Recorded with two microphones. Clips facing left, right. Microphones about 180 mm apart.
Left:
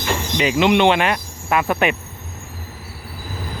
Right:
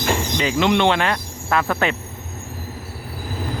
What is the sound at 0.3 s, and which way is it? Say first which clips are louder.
Speech: left 4 dB; 15° left (ahead or behind).